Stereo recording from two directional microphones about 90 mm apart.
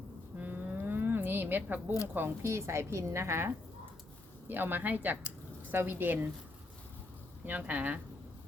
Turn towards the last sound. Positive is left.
turn(degrees=-15)  # may be behind; listen again after turning